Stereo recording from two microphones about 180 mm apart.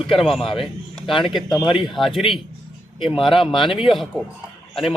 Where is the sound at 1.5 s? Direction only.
25° left (ahead or behind).